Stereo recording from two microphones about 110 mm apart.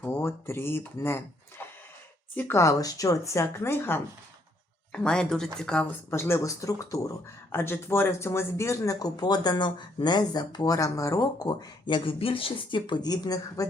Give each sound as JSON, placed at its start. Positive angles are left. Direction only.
{"t": 0.0, "sound": "speech", "side_deg": 20}
{"t": 4.9, "sound": "speech", "side_deg": 10}
{"t": 6.1, "sound": "speech", "side_deg": 25}
{"t": 10.8, "sound": "speech", "side_deg": 30}